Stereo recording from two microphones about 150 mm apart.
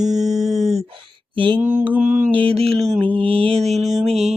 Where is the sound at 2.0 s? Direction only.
60° right (ahead or behind).